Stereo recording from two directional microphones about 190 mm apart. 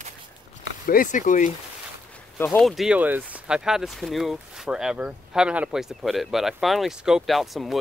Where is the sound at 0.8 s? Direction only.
45° left (ahead or behind).